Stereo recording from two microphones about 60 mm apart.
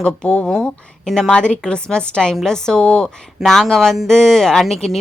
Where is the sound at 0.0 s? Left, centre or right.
Left.